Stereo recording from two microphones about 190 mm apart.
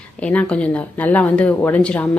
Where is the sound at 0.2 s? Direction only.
5° left (ahead or behind).